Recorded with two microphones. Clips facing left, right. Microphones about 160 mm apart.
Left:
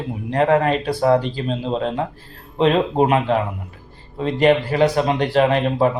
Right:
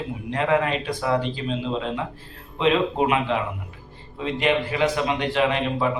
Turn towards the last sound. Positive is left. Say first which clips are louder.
# left 5 dB
turn(degrees=40)  # may be behind; listen again after turning